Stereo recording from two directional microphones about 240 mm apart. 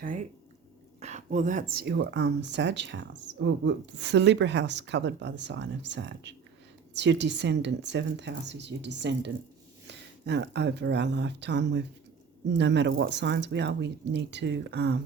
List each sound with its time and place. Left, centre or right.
0.9 s speech: right